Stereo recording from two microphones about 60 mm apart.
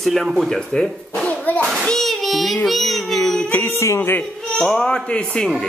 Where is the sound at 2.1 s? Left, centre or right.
Centre.